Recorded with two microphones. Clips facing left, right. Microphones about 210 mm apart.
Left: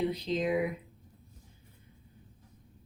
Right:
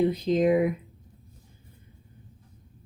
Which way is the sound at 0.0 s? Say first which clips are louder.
Right 8 dB; 50° right (ahead or behind).